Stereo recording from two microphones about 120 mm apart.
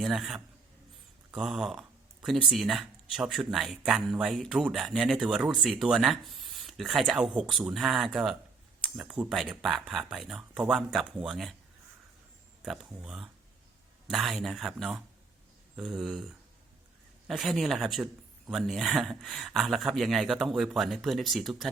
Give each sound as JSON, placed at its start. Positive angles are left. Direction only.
{"t": 0.0, "sound": "speech", "side_deg": 0}
{"t": 12.6, "sound": "speech", "side_deg": -5}